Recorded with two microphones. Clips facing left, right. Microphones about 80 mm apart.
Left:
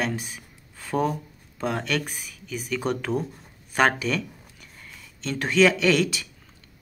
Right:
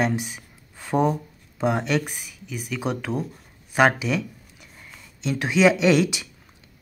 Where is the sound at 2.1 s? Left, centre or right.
Centre.